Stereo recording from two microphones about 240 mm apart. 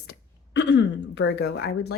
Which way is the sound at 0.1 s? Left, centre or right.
Left.